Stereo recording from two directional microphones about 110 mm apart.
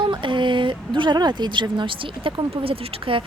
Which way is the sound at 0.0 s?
50° right (ahead or behind).